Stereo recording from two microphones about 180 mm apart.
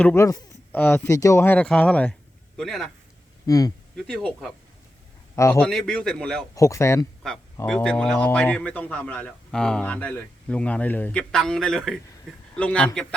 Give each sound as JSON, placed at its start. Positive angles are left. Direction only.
{"t": 0.0, "sound": "a man's voice", "side_deg": 15}
{"t": 3.4, "sound": "speech", "side_deg": 20}
{"t": 3.9, "sound": "a man's voice", "side_deg": 0}
{"t": 5.5, "sound": "a man's voice", "side_deg": 0}
{"t": 6.5, "sound": "speech", "side_deg": 15}
{"t": 7.7, "sound": "a man's voice", "side_deg": 5}